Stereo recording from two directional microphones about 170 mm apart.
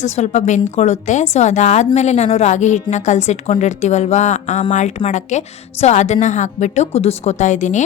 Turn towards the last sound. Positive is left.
turn(degrees=45)  # may be behind; listen again after turning